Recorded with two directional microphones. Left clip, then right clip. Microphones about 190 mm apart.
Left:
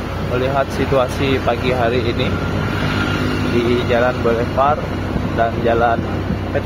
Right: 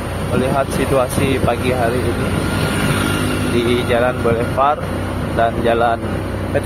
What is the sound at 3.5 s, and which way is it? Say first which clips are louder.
Speech: even; 20° right (ahead or behind).